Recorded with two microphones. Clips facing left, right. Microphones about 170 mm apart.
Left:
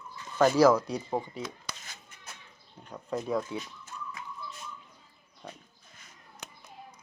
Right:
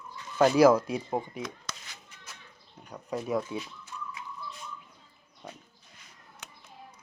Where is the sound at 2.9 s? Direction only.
10° right (ahead or behind).